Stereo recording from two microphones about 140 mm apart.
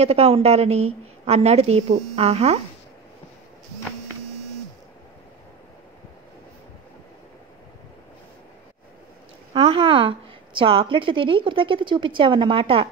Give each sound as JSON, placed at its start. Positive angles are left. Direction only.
{"t": 0.0, "sound": "a woman's voice", "side_deg": -45}
{"t": 9.5, "sound": "a woman's voice", "side_deg": -40}